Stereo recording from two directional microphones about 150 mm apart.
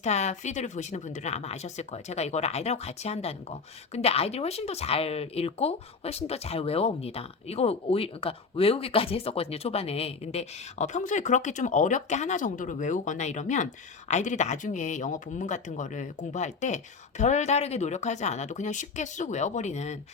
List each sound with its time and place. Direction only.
0.0 s speech: 50° left (ahead or behind)